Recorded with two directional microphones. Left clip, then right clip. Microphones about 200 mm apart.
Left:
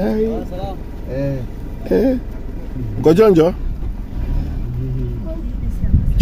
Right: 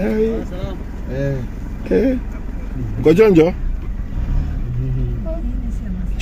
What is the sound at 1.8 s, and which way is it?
Vehicle, 10° left (ahead or behind).